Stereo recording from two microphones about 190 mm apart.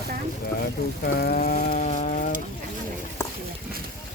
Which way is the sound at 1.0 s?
50° left (ahead or behind).